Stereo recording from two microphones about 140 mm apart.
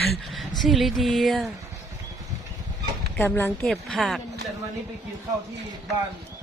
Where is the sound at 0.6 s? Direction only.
Centre (ahead or behind).